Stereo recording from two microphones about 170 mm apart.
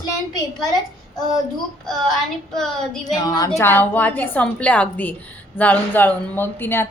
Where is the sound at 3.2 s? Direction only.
20° left (ahead or behind).